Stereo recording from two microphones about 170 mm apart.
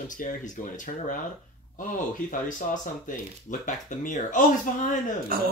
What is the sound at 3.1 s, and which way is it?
Speech, 50° left (ahead or behind).